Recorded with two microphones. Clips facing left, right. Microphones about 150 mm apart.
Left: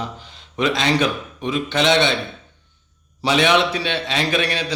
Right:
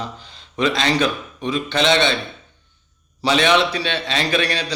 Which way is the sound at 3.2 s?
15° left (ahead or behind).